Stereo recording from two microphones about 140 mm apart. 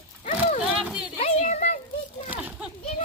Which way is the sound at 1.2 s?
55° left (ahead or behind).